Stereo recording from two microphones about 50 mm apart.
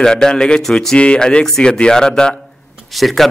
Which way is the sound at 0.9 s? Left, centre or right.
Left.